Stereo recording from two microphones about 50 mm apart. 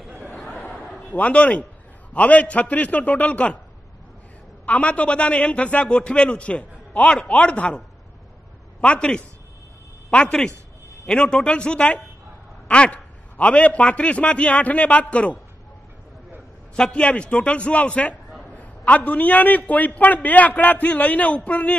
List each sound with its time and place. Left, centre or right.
0.7 s a sound: left
2.1 s a man's voice: left
4.6 s a man's voice: left
8.8 s a man's voice: left
16.7 s a man's voice: centre